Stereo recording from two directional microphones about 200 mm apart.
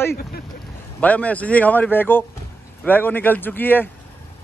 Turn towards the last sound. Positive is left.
turn(degrees=10)  # may be behind; listen again after turning